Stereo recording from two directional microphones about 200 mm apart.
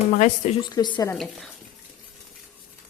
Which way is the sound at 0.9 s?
15° left (ahead or behind).